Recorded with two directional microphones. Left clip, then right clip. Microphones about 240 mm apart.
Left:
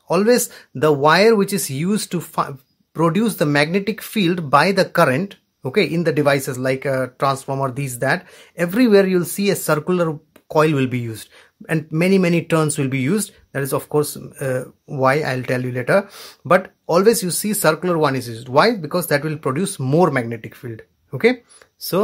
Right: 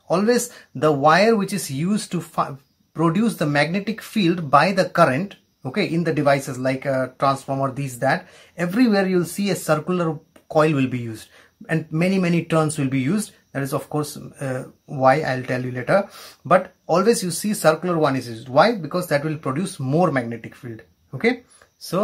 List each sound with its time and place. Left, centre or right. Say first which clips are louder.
0.1 s speech: left 3 dB; left
21.9 s speech: left 3 dB; left